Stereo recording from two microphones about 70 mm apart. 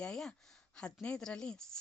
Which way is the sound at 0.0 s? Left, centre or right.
Centre.